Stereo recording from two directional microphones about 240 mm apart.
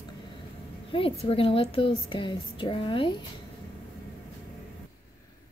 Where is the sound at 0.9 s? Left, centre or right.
Left.